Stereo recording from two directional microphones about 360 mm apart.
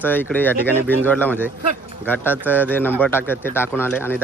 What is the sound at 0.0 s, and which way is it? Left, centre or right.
Speech, centre.